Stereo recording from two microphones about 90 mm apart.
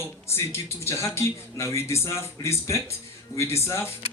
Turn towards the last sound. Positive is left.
turn(degrees=30)  # may be behind; listen again after turning